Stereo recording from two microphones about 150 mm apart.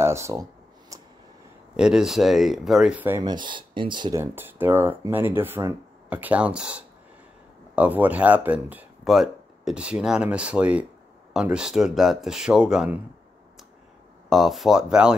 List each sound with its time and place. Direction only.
0.0 s a sound: 20° right (ahead or behind)
1.8 s speech: 5° right (ahead or behind)
3.2 s speech: 30° right (ahead or behind)
4.2 s speech: 15° right (ahead or behind)
9.0 s speech: centre (ahead or behind)
14.3 s speech: centre (ahead or behind)